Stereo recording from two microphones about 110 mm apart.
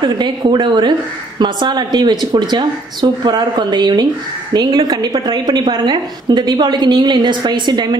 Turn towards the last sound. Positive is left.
turn(degrees=-40)  # may be behind; listen again after turning